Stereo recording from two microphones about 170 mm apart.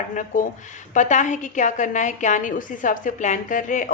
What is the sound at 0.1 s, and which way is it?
A woman's voice, 50° left (ahead or behind).